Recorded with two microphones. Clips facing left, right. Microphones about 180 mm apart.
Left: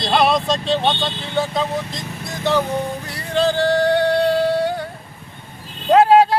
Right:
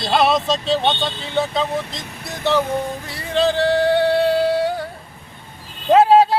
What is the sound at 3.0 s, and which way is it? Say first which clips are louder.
Music: even; centre (ahead or behind).